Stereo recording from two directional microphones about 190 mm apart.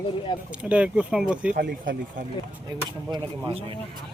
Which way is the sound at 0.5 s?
5° right (ahead or behind).